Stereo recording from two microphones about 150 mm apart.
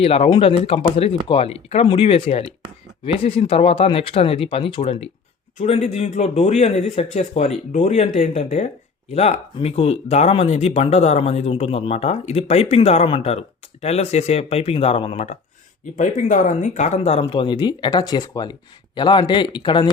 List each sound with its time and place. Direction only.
0.0 s speech: 40° left (ahead or behind)
16.0 s speech: 60° left (ahead or behind)
17.2 s speech: 35° left (ahead or behind)